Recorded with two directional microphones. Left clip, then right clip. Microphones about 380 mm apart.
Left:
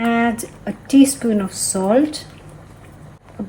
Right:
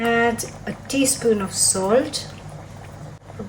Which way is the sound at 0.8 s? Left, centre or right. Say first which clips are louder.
Left 4 dB; centre.